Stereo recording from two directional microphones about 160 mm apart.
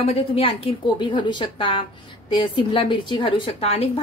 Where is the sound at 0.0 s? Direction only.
35° left (ahead or behind).